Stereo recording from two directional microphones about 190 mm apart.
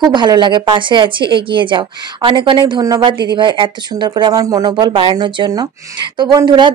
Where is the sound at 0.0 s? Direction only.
25° right (ahead or behind).